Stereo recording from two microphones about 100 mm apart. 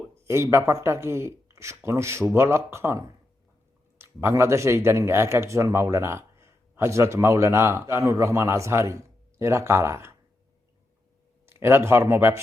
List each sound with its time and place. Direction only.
0.3 s speech: 25° right (ahead or behind)
11.4 s speech: 25° right (ahead or behind)